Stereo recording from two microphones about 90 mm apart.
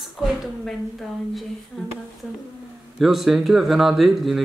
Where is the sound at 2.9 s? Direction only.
Centre (ahead or behind).